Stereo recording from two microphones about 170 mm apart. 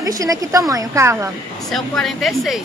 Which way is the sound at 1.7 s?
Centre (ahead or behind).